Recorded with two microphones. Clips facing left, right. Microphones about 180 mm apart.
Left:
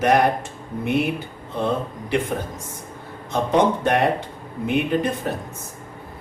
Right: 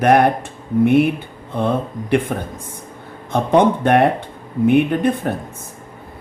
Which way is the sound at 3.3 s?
55° right (ahead or behind).